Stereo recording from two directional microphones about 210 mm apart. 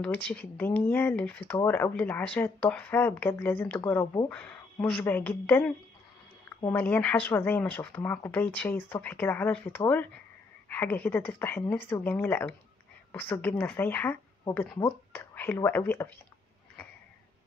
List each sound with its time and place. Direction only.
0.0 s speech: 5° left (ahead or behind)
4.3 s speech: 5° left (ahead or behind)